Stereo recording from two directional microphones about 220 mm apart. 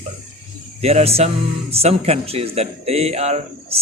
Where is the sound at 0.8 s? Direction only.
30° right (ahead or behind).